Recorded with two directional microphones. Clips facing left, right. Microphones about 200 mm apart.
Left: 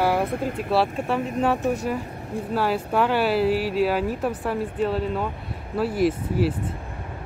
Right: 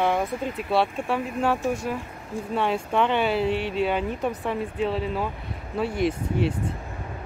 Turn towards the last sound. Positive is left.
turn(degrees=5)  # may be behind; listen again after turning